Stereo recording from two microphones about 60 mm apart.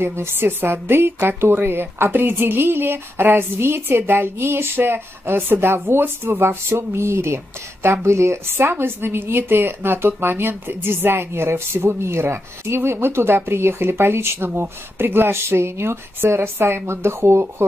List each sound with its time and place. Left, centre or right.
0.0 s a woman's voice: right